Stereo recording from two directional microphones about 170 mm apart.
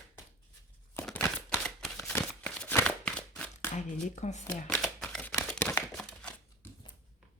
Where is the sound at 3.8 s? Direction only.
45° left (ahead or behind).